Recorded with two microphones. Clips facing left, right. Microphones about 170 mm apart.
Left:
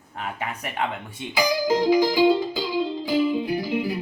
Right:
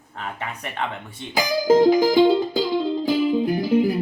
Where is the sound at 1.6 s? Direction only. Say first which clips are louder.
Right 6 dB; 50° right (ahead or behind).